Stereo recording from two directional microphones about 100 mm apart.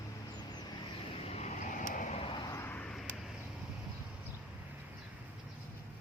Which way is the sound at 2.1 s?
60° left (ahead or behind).